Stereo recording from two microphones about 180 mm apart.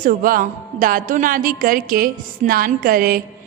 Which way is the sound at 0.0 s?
50° right (ahead or behind).